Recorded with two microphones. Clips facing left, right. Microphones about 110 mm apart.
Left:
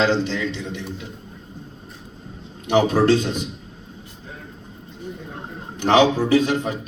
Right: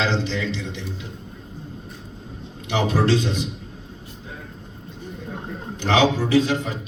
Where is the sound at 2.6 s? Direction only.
50° left (ahead or behind).